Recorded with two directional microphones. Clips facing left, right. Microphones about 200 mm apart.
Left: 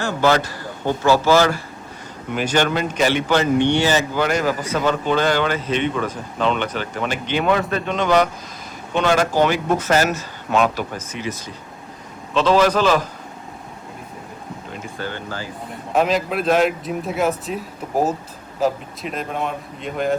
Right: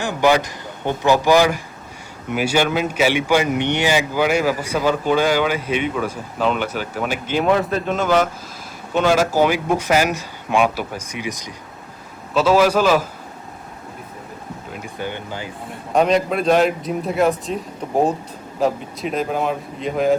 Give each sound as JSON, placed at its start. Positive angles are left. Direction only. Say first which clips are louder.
{"t": 0.0, "sound": "speech", "louder": "right 1 dB", "side_deg": -15}
{"t": 14.9, "sound": "speech", "louder": "right 1 dB", "side_deg": -15}
{"t": 15.9, "sound": "a man's voice", "louder": "right 2 dB", "side_deg": 0}